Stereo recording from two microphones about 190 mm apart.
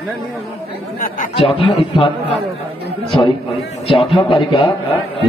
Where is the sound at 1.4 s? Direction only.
30° left (ahead or behind).